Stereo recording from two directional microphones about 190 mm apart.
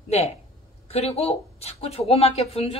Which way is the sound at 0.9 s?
35° left (ahead or behind).